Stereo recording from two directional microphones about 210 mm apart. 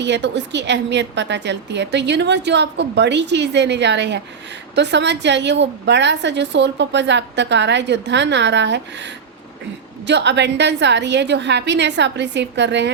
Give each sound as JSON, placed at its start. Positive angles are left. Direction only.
{"t": 0.0, "sound": "a woman's voice", "side_deg": -55}